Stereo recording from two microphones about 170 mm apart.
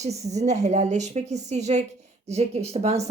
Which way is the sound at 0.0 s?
40° right (ahead or behind).